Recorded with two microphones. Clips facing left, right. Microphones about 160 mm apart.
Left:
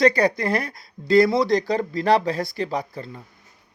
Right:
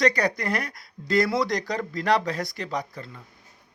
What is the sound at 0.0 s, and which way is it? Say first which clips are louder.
Speech: left 5 dB; 30° left (ahead or behind).